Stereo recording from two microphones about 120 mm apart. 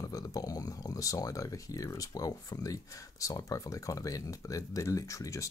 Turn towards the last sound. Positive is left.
turn(degrees=25)  # may be behind; listen again after turning